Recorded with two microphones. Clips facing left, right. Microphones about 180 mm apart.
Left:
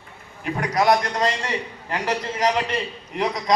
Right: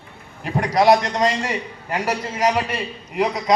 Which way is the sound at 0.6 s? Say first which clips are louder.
Right 4 dB; 30° right (ahead or behind).